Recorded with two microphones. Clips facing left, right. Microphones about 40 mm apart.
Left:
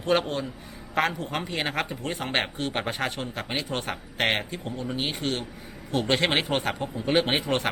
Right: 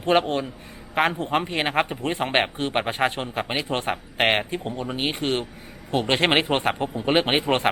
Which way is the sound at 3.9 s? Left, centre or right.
Right.